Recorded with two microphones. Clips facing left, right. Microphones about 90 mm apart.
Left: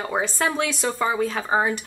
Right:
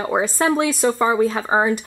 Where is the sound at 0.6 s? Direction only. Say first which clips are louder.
Right 6 dB; 5° right (ahead or behind).